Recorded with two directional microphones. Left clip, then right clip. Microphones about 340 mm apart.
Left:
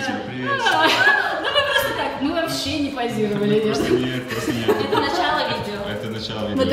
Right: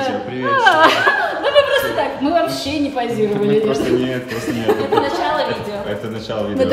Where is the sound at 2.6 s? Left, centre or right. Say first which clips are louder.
Right 4 dB; centre.